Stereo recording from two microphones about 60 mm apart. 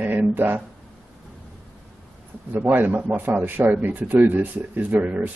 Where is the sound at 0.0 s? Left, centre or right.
Right.